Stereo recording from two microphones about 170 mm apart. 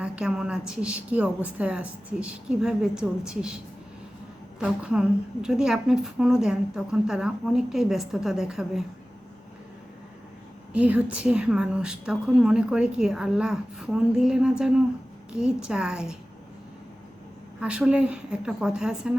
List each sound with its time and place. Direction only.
0.0 s a woman's voice: 5° right (ahead or behind)
4.6 s a woman's voice: 5° right (ahead or behind)
10.7 s a woman's voice: 5° right (ahead or behind)
17.6 s a woman's voice: 5° right (ahead or behind)